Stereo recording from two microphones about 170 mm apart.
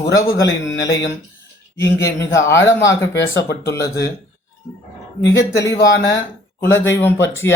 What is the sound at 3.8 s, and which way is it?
Speech, 20° left (ahead or behind).